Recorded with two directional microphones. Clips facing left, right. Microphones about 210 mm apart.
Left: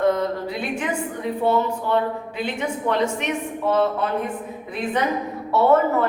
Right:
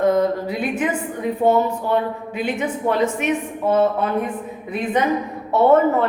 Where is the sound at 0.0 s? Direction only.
10° right (ahead or behind).